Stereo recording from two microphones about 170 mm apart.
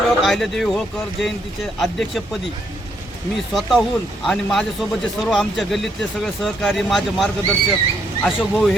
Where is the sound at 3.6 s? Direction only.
Centre (ahead or behind).